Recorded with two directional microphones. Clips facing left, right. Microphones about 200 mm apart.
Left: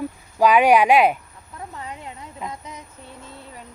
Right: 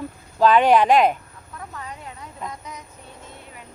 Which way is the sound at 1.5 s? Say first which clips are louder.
Left 1 dB; 25° left (ahead or behind).